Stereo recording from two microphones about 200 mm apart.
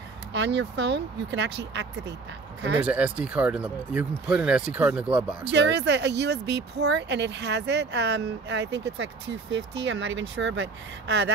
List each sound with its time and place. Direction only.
0.3 s speech: 60° right (ahead or behind)
2.8 s speech: 5° right (ahead or behind)
5.5 s speech: 60° right (ahead or behind)